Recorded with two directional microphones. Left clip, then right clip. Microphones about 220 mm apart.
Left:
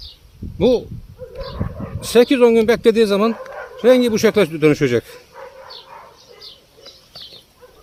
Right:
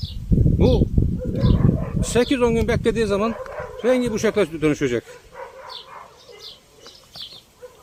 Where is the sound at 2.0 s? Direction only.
35° left (ahead or behind).